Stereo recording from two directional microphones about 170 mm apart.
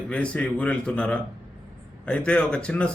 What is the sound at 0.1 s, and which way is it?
Speech, 5° left (ahead or behind).